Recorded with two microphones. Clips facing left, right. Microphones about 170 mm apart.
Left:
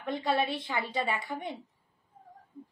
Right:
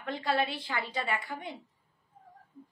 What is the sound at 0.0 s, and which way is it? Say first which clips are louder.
A woman's voice: left 1 dB; 20° left (ahead or behind).